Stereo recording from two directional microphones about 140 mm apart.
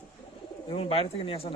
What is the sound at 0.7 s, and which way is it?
Speech, 40° left (ahead or behind).